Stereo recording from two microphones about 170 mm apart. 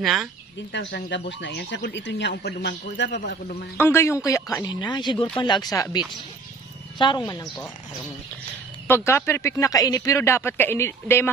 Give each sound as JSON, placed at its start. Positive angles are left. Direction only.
{"t": 0.0, "sound": "speech", "side_deg": 0}
{"t": 0.7, "sound": "speech", "side_deg": 80}
{"t": 3.7, "sound": "speech", "side_deg": 15}
{"t": 7.0, "sound": "speech", "side_deg": 25}
{"t": 8.8, "sound": "speech", "side_deg": 15}